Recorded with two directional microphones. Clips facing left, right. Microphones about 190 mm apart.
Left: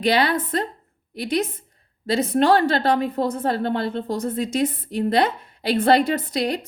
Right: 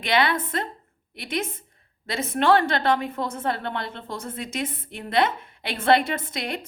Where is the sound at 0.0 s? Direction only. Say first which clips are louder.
Left 3 dB; 35° left (ahead or behind).